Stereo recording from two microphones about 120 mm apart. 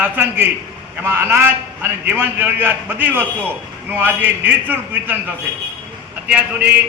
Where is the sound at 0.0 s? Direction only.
15° right (ahead or behind).